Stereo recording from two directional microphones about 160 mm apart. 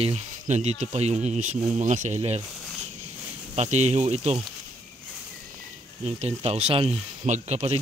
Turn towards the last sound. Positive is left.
turn(degrees=-40)  # may be behind; listen again after turning